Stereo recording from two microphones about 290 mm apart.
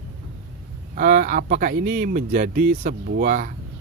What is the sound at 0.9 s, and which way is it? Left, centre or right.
Speech, right.